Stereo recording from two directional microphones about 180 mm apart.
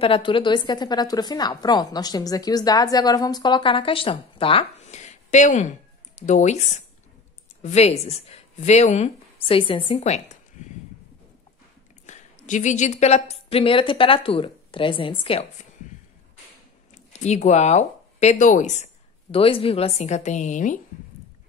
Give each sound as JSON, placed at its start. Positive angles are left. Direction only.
{"t": 0.0, "sound": "a woman's voice", "side_deg": 30}
{"t": 12.1, "sound": "a woman's voice", "side_deg": 45}
{"t": 17.2, "sound": "speech", "side_deg": 40}
{"t": 19.3, "sound": "speech", "side_deg": 30}